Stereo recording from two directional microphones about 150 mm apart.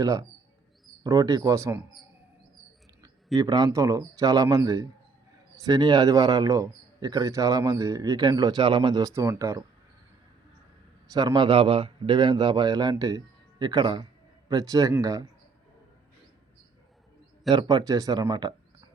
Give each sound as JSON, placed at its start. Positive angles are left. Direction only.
{"t": 0.0, "sound": "a man's voice", "side_deg": -25}
{"t": 3.3, "sound": "a man's voice", "side_deg": -25}
{"t": 11.1, "sound": "a man's voice", "side_deg": -25}
{"t": 17.5, "sound": "a man's voice", "side_deg": -30}